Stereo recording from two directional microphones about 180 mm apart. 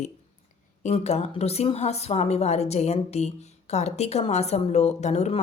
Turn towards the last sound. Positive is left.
turn(degrees=35)  # may be behind; listen again after turning